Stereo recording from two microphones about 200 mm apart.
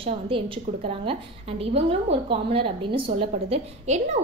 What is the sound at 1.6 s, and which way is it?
A woman's voice, 30° right (ahead or behind).